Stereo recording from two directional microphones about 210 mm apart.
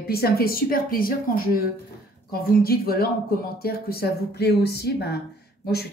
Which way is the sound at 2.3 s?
45° left (ahead or behind).